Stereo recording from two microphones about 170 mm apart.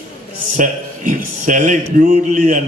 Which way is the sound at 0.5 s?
50° right (ahead or behind).